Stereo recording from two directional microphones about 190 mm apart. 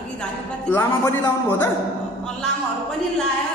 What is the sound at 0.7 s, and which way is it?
A man's voice, 15° left (ahead or behind).